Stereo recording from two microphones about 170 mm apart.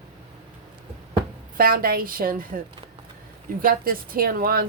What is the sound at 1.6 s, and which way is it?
Speech, 60° right (ahead or behind).